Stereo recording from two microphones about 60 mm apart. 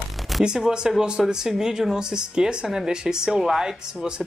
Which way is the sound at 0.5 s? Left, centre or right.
Centre.